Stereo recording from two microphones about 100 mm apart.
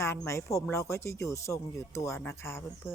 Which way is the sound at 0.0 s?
25° left (ahead or behind).